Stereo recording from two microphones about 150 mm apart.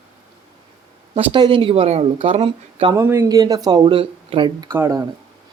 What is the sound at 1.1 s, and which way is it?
Speech, 35° right (ahead or behind).